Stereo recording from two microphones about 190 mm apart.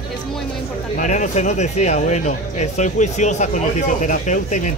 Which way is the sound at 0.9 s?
40° left (ahead or behind).